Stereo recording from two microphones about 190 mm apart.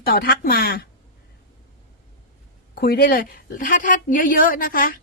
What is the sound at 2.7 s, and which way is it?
Speech, 55° left (ahead or behind).